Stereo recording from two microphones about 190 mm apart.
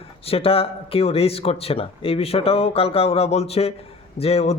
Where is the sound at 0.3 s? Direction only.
30° left (ahead or behind).